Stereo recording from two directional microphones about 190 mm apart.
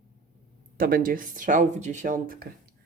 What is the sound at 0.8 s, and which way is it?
Speech, 50° right (ahead or behind).